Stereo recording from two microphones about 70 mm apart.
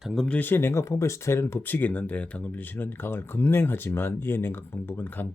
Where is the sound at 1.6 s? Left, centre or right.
Left.